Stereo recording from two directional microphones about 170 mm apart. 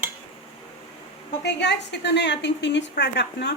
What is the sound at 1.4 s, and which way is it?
A woman's voice, 90° left.